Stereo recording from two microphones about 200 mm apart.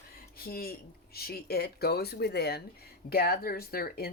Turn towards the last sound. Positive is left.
turn(degrees=50)  # may be behind; listen again after turning